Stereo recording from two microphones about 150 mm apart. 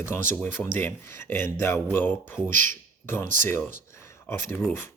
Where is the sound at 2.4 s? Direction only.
60° right (ahead or behind).